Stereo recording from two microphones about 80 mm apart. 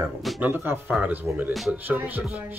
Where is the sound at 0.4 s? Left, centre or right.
Right.